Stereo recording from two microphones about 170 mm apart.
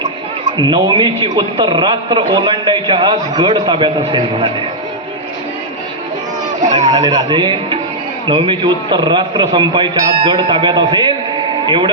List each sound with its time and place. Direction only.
0.6 s a man's voice: 25° right (ahead or behind)
6.7 s speech: 45° right (ahead or behind)
6.9 s a man's voice: 20° right (ahead or behind)